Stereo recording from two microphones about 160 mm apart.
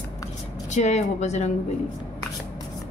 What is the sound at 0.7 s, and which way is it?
Speech, 45° left (ahead or behind).